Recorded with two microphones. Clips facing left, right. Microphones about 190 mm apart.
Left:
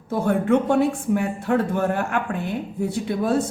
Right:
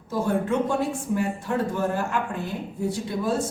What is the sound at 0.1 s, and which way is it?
Speech, 60° left (ahead or behind).